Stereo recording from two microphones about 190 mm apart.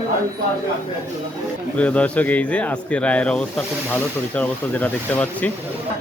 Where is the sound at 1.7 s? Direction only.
5° left (ahead or behind).